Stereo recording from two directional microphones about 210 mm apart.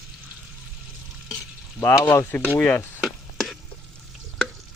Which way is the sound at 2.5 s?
10° left (ahead or behind).